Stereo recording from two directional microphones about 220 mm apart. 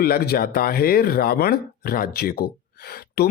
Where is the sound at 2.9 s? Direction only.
45° left (ahead or behind).